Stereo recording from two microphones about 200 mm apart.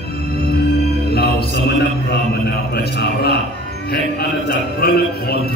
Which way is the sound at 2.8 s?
55° left (ahead or behind).